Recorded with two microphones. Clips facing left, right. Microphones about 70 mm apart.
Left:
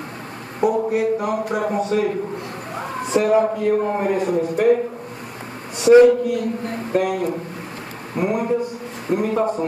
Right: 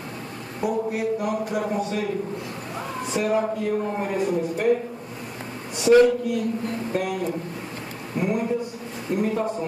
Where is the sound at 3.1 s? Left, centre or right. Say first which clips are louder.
Left 7 dB; left.